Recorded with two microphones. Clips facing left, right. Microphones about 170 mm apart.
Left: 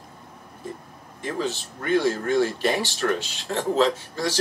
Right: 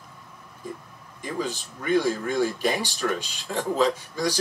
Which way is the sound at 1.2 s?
10° right (ahead or behind).